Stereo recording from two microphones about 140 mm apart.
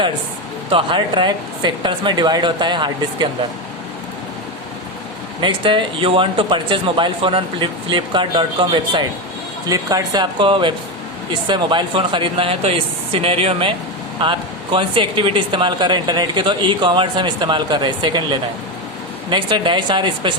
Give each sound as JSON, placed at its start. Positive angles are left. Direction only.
{"t": 0.7, "sound": "speech", "side_deg": -35}
{"t": 5.4, "sound": "speech", "side_deg": -35}